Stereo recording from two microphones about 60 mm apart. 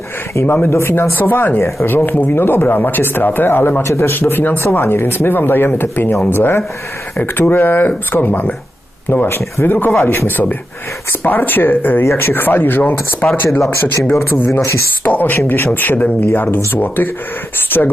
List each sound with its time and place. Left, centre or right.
0.4 s speech: left
1.6 s speech: left
2.0 s speech: left
3.8 s speech: left
4.1 s speech: left
13.2 s speech: left
13.7 s speech: left